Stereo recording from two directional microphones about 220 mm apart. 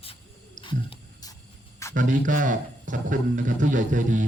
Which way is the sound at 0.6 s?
20° left (ahead or behind).